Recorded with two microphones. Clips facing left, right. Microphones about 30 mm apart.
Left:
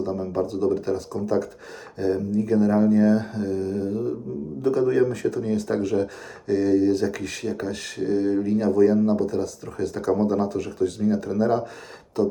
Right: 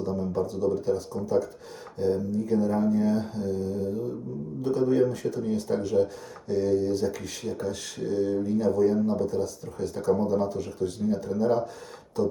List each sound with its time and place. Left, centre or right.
0.4 s speech: left
2.0 s speech: left
7.8 s speech: left
10.2 s speech: left